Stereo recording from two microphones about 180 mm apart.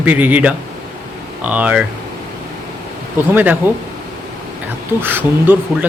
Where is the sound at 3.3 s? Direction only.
10° right (ahead or behind).